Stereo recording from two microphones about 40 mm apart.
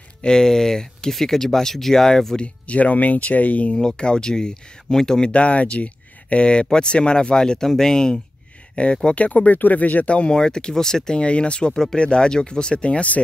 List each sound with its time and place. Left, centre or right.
0.2 s speech: centre
2.4 s speech: left
3.7 s speech: centre
5.3 s speech: left; by 8.2 s centre
8.8 s speech: left
10.0 s speech: left
11.1 s speech: left
11.7 s speech: centre; by 13.2 s left